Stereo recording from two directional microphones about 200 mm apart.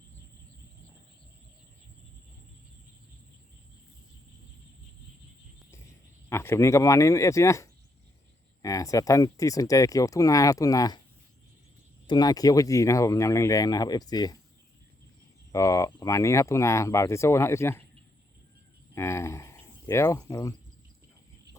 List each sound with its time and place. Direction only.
6.2 s speech: 15° left (ahead or behind)
12.0 s speech: 20° left (ahead or behind)
15.5 s speech: 15° left (ahead or behind)
18.9 s speech: 15° left (ahead or behind)